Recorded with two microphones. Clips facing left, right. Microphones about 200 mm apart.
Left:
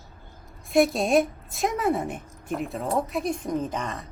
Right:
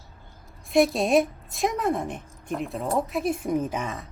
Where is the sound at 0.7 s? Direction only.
Centre (ahead or behind).